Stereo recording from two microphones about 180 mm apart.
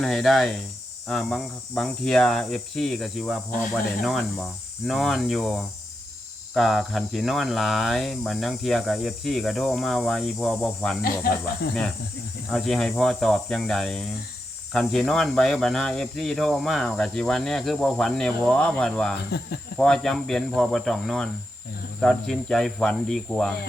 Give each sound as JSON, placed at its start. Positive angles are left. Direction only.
{"t": 0.0, "sound": "speech", "side_deg": 0}
{"t": 11.0, "sound": "speech", "side_deg": 55}
{"t": 12.5, "sound": "speech", "side_deg": 0}